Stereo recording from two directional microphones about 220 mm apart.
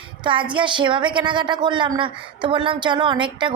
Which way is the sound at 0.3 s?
20° right (ahead or behind).